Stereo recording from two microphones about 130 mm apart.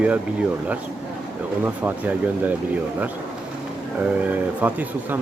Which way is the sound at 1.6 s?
10° right (ahead or behind).